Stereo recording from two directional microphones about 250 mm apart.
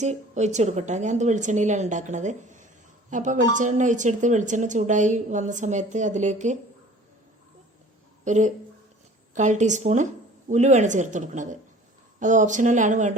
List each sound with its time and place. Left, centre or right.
0.0 s speech: right
8.2 s speech: right